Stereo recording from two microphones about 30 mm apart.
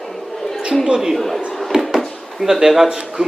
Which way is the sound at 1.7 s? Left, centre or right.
Right.